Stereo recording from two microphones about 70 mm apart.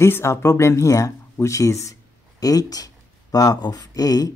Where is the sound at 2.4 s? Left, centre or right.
Left.